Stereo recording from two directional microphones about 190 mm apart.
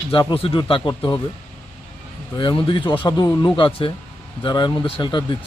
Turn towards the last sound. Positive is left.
turn(degrees=25)  # may be behind; listen again after turning